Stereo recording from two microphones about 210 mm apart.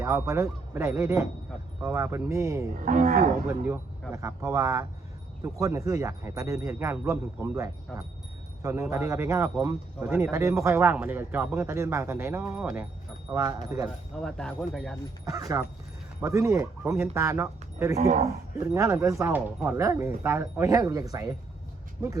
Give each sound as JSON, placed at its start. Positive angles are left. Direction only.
{"t": 0.0, "sound": "speech", "side_deg": -15}
{"t": 2.7, "sound": "speech", "side_deg": -40}
{"t": 4.1, "sound": "speech", "side_deg": -15}
{"t": 14.2, "sound": "speech", "side_deg": 0}
{"t": 15.2, "sound": "speech", "side_deg": -15}
{"t": 17.9, "sound": "speech", "side_deg": -35}
{"t": 18.6, "sound": "speech", "side_deg": -15}
{"t": 22.0, "sound": "speech", "side_deg": -5}